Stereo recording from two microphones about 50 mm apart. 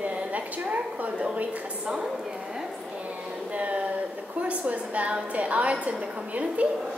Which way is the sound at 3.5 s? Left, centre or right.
Right.